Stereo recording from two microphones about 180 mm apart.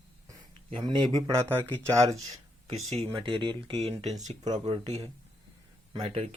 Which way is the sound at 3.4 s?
25° right (ahead or behind).